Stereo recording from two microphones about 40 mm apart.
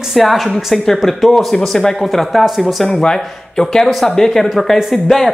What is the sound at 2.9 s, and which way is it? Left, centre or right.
Speech, centre.